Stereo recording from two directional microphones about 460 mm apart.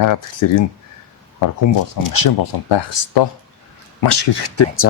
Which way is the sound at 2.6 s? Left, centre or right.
Left.